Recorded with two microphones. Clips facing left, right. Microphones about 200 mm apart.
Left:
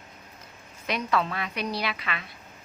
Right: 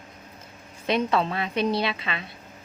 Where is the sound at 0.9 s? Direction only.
25° right (ahead or behind).